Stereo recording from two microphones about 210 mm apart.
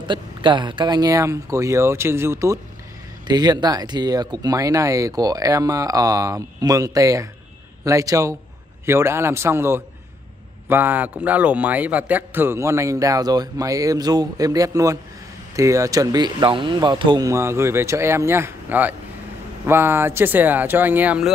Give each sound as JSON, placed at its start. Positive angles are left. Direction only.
{"t": 0.0, "sound": "a man's voice", "side_deg": -20}